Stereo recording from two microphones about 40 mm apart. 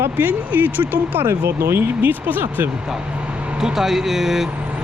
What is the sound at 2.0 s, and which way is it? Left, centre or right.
Speech, right.